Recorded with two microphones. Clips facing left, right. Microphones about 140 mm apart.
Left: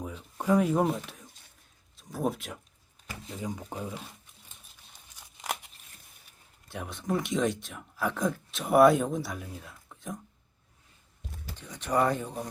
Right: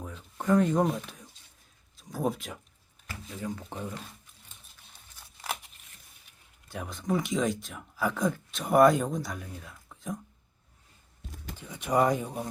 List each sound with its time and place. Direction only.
0.0 s a sound: 10° left (ahead or behind)
2.0 s speech: centre (ahead or behind)
3.4 s speech: 15° left (ahead or behind)
5.1 s tearing: 15° left (ahead or behind)
6.7 s speech: centre (ahead or behind)
11.5 s speech: 10° right (ahead or behind)